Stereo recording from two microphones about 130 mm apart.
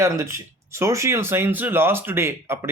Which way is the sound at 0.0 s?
20° right (ahead or behind).